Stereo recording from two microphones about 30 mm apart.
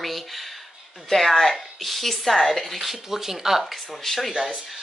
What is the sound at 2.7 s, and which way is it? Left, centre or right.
Speech, centre.